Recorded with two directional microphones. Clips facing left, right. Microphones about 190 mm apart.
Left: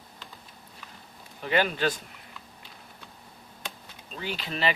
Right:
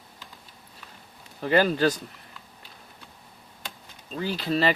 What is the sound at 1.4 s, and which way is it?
Speech, 40° right (ahead or behind).